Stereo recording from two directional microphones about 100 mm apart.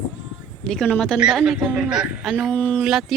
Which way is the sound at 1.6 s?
10° right (ahead or behind).